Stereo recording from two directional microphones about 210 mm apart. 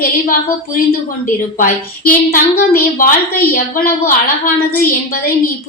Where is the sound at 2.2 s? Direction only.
45° left (ahead or behind).